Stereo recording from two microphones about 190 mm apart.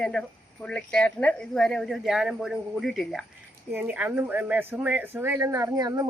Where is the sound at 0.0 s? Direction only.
5° left (ahead or behind).